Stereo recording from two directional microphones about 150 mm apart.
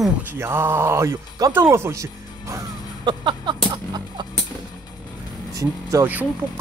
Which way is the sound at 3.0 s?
30° right (ahead or behind).